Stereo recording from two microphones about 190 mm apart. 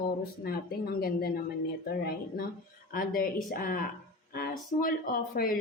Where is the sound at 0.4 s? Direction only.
55° left (ahead or behind).